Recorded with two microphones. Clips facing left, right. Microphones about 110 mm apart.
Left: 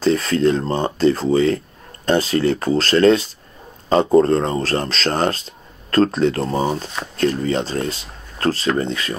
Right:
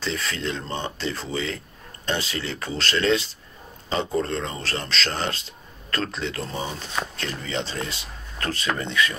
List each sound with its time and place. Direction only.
0.0 s speech: 45° left (ahead or behind)